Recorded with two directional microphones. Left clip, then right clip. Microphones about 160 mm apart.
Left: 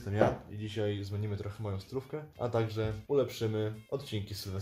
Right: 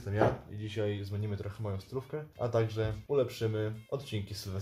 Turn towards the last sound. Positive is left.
turn(degrees=5)  # may be behind; listen again after turning